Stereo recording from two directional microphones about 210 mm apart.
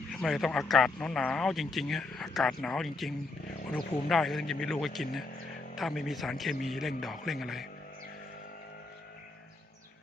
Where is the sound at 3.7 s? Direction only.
Centre (ahead or behind).